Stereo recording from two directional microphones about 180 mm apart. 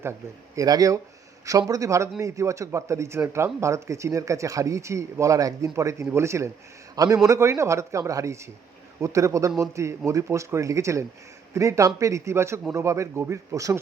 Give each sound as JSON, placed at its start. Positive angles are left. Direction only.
{"t": 0.5, "sound": "a man's voice", "side_deg": -20}